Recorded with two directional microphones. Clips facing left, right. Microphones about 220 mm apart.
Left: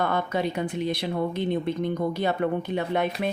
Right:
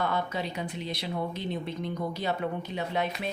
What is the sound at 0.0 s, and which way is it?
Speech, 55° left (ahead or behind).